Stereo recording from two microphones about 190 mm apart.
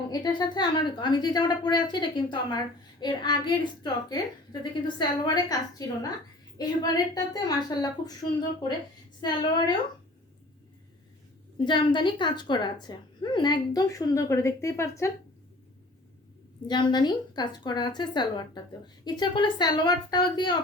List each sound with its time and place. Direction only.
0.1 s a woman's voice: 20° left (ahead or behind)
6.6 s a woman's voice: 20° left (ahead or behind)
9.2 s a woman's voice: 25° left (ahead or behind)
11.6 s a woman's voice: 25° left (ahead or behind)
16.6 s a woman's voice: 25° left (ahead or behind)